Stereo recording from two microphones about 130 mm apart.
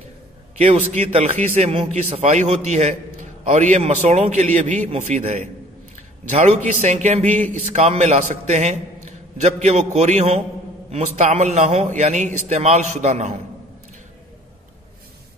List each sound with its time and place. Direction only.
0.6 s a man's voice: 60° right (ahead or behind)
2.2 s a man's voice: 65° right (ahead or behind)